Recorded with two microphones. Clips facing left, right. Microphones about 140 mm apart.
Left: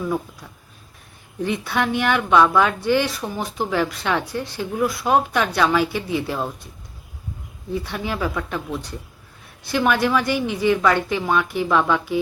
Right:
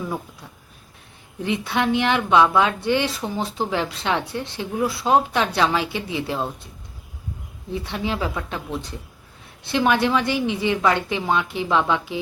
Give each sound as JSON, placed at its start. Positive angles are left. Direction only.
{"t": 1.5, "sound": "a woman's voice", "side_deg": -20}
{"t": 7.7, "sound": "a woman's voice", "side_deg": -20}